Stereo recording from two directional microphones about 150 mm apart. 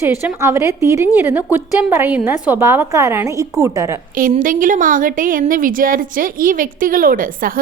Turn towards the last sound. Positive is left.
turn(degrees=-70)  # may be behind; listen again after turning